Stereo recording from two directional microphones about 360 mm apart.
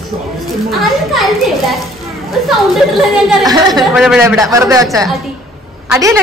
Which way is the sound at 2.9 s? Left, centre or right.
Centre.